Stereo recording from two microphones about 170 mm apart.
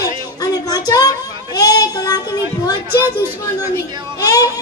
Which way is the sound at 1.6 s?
20° left (ahead or behind).